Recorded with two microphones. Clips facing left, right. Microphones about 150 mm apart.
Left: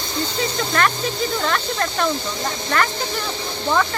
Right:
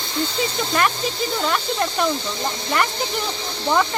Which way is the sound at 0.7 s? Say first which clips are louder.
Left 1 dB; 10° right (ahead or behind).